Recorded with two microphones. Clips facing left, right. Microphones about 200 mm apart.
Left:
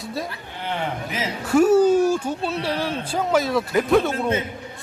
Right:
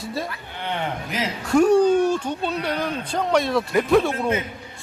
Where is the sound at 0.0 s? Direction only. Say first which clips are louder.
Right 1 dB; centre (ahead or behind).